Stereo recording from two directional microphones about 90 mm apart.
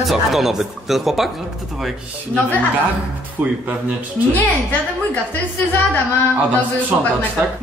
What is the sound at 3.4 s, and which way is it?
Speech, 20° right (ahead or behind).